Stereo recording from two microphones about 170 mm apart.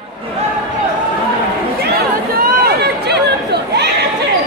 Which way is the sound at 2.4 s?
70° right (ahead or behind).